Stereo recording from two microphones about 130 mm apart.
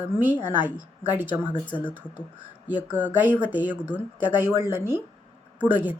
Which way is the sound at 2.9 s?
10° right (ahead or behind).